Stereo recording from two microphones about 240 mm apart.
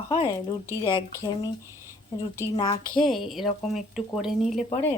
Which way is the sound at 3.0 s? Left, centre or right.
Centre.